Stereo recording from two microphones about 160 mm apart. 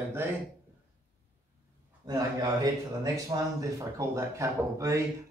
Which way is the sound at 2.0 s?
20° right (ahead or behind).